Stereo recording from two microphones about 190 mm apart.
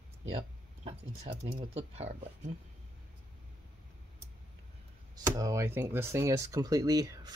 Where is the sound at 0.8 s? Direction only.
30° right (ahead or behind).